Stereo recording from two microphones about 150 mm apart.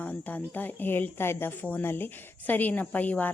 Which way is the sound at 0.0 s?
10° left (ahead or behind).